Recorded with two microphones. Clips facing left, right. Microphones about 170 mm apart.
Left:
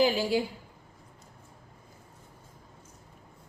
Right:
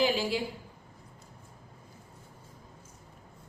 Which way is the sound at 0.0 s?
45° left (ahead or behind).